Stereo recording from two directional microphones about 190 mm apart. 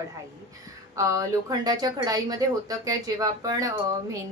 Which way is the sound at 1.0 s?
15° right (ahead or behind).